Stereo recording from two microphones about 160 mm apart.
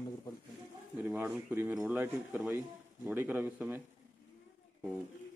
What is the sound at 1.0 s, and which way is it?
Speech, 10° right (ahead or behind).